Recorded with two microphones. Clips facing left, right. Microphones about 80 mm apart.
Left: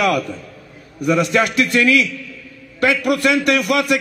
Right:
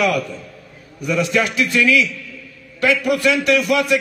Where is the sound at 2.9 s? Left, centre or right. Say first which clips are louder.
Even; left.